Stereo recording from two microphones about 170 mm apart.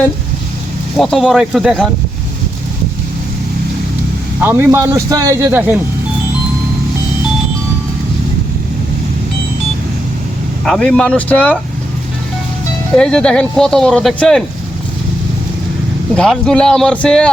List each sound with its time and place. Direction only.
0.9 s speech: centre (ahead or behind)
4.4 s speech: 15° right (ahead or behind)
10.7 s speech: 5° left (ahead or behind)
13.0 s speech: 5° left (ahead or behind)
16.1 s speech: 5° left (ahead or behind)